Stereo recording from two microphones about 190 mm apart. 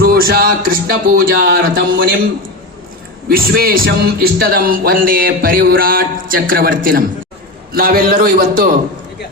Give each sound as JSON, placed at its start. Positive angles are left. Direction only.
{"t": 0.0, "sound": "a man's voice", "side_deg": -55}
{"t": 3.2, "sound": "a man's voice", "side_deg": -50}